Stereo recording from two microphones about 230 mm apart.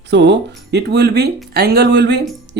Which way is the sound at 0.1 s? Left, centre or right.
Right.